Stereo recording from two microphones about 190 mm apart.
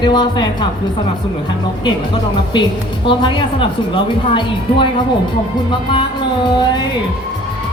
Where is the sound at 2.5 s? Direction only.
25° left (ahead or behind).